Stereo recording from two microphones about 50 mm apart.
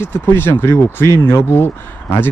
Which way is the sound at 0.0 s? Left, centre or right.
Left.